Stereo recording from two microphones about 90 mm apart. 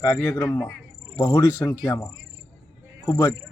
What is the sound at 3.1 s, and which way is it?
Speech, 30° left (ahead or behind).